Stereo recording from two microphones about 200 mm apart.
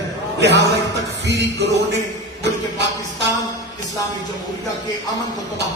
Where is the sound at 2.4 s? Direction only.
60° right (ahead or behind).